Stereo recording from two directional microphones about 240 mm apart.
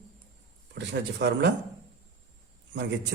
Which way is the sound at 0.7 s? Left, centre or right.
Right.